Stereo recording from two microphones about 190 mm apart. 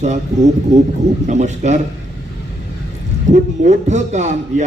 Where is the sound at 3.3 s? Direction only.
40° right (ahead or behind).